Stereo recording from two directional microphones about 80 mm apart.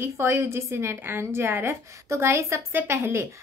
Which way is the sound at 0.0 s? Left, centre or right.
Right.